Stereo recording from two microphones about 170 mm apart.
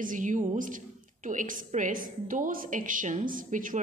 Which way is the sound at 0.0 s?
50° right (ahead or behind).